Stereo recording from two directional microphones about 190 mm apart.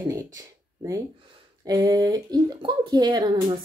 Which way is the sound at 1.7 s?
20° right (ahead or behind).